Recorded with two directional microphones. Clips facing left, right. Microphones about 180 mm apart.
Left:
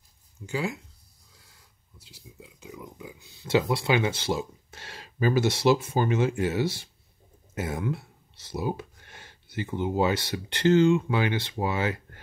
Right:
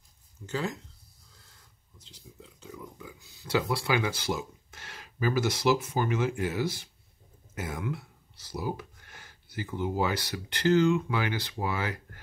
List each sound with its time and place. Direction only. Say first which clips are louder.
0.5 s speech: left 2 dB; 10° left (ahead or behind)
2.0 s speech: left 2 dB; 10° left (ahead or behind); by 12.2 s 25° left (ahead or behind)